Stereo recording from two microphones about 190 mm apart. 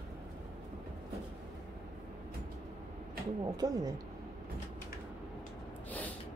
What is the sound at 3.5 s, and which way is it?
Speech, 20° right (ahead or behind).